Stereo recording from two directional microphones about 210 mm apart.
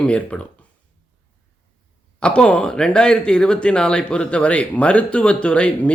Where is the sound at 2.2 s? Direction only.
5° left (ahead or behind).